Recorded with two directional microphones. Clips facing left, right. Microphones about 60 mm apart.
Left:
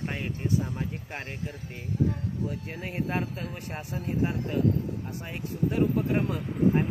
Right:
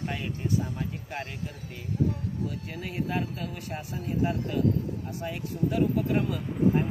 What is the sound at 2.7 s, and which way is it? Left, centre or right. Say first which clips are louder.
Speech: even; left.